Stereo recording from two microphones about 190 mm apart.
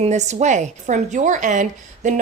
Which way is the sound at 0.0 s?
35° right (ahead or behind).